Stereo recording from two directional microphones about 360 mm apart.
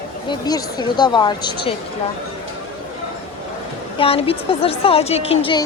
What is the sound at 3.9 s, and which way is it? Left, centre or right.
A woman's voice, centre.